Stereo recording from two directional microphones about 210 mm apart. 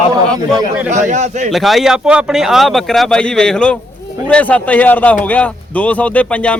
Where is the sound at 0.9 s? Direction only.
35° right (ahead or behind).